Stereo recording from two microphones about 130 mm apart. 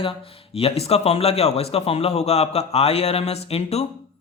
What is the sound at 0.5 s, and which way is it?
A man's voice, 50° left (ahead or behind).